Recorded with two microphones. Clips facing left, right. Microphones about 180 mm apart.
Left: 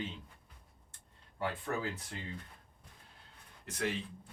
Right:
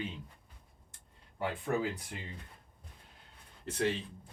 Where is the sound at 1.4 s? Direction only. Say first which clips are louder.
Right 3 dB; 15° right (ahead or behind).